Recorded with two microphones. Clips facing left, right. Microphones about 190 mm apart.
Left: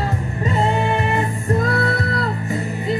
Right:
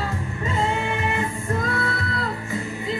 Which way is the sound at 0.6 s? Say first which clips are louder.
Left 5 dB; 40° left (ahead or behind).